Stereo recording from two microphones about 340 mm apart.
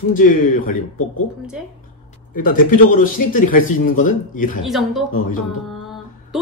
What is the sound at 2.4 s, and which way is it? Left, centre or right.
Speech, left.